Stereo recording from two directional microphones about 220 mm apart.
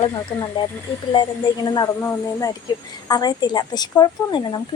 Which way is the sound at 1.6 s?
15° left (ahead or behind).